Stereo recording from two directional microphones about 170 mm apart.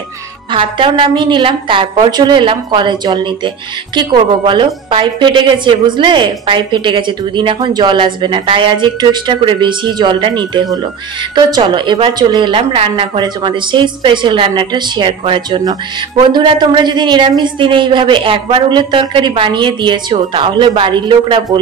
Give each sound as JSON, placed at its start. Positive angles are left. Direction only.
{"t": 0.5, "sound": "a woman's voice", "side_deg": -30}